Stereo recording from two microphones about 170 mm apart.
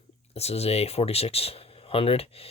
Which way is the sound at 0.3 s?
40° left (ahead or behind).